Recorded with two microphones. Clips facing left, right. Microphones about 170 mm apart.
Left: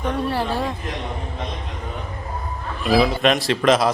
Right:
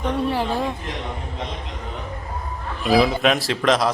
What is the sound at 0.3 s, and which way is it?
Speech, 15° right (ahead or behind).